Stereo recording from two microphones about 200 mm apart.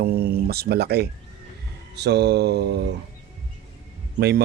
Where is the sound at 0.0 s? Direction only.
50° right (ahead or behind).